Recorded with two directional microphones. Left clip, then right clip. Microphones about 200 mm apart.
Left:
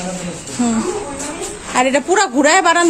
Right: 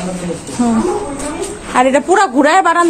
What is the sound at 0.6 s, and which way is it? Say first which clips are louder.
A woman's voice: right 4 dB; 15° left (ahead or behind).